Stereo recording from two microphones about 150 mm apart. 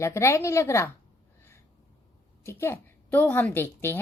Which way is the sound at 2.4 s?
15° left (ahead or behind).